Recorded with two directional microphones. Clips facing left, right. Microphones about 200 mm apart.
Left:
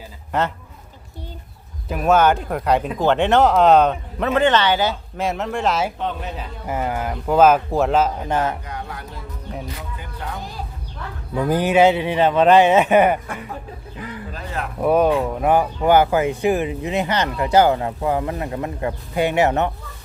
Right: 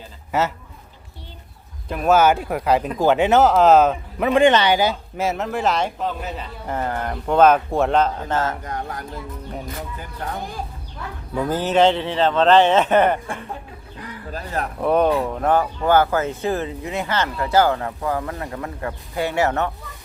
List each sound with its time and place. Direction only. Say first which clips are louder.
0.3 s a man's voice: even; 5° right (ahead or behind)
1.9 s speech: even; centre (ahead or behind)
8.6 s speech: right 3 dB; 45° right (ahead or behind)
11.4 s speech: left 2 dB; 15° left (ahead or behind)
14.3 s a sound: right 4 dB; 40° right (ahead or behind)
14.8 s speech: left 2 dB; 5° left (ahead or behind)